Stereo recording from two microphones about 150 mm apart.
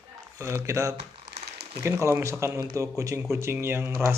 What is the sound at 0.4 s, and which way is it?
Speech, 20° right (ahead or behind).